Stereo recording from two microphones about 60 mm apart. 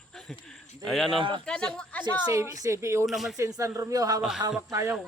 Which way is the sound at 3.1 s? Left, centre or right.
Centre.